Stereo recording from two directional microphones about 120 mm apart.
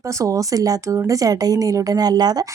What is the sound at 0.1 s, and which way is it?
Speech, 25° right (ahead or behind).